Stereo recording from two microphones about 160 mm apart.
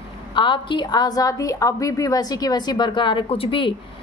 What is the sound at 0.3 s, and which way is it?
A woman's voice, 30° left (ahead or behind).